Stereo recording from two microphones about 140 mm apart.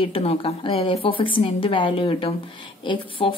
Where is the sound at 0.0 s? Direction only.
40° left (ahead or behind).